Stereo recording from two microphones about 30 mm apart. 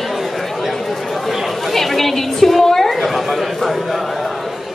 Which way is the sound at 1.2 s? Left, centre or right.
Centre.